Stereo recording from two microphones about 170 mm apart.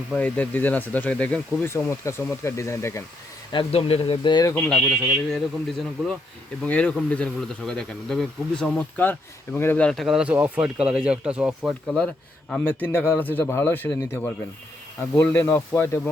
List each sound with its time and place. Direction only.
0.2 s speech: 10° left (ahead or behind)
3.5 s speech: 30° left (ahead or behind)
4.5 s speech: 5° left (ahead or behind)
11.9 s speech: 5° left (ahead or behind)